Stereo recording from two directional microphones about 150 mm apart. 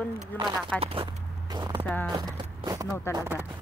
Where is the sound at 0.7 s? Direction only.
40° right (ahead or behind).